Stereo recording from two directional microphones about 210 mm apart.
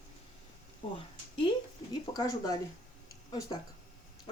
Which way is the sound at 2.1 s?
20° left (ahead or behind).